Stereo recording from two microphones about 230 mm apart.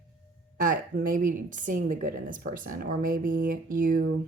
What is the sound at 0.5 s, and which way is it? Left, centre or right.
A woman's voice, right.